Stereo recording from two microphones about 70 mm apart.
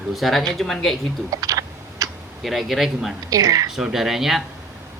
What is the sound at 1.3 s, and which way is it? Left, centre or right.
Typing, right.